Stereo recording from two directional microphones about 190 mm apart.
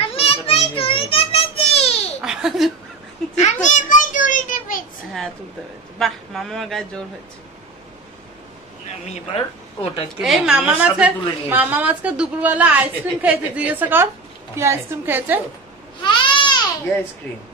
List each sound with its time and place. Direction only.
0.0 s a sound: 30° left (ahead or behind)
2.2 s giggle: centre (ahead or behind)
3.3 s a sound: 40° left (ahead or behind)
5.9 s speech: centre (ahead or behind)
9.0 s speech: 35° left (ahead or behind)
10.2 s a woman's voice: 5° right (ahead or behind)
16.0 s goat: 25° left (ahead or behind)